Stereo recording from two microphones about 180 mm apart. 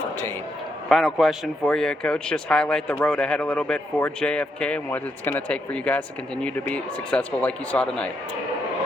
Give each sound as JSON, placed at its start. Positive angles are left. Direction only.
{"t": 0.9, "sound": "speech", "side_deg": 0}